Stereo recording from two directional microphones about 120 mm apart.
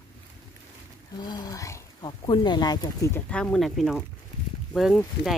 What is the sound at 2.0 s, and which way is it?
Speech, 40° left (ahead or behind).